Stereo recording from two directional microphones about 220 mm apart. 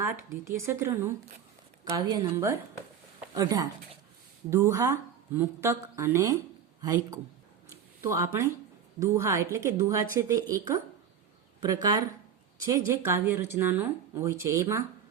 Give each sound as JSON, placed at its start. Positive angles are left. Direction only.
{"t": 0.0, "sound": "speech", "side_deg": -10}
{"t": 7.7, "sound": "a sound", "side_deg": -15}
{"t": 9.0, "sound": "speech", "side_deg": -15}
{"t": 11.6, "sound": "speech", "side_deg": -15}